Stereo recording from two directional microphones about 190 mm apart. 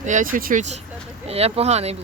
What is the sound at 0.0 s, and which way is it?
Speech, 40° right (ahead or behind).